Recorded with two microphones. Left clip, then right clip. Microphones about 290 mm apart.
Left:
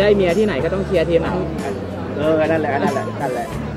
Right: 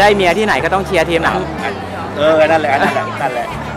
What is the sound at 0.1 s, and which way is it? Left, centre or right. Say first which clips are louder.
Speech: right 4 dB; right.